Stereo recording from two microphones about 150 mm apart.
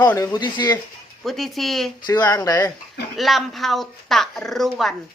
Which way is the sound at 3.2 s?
Centre (ahead or behind).